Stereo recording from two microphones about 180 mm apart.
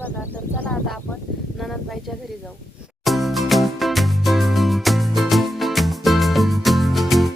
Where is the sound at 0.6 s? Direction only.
5° left (ahead or behind).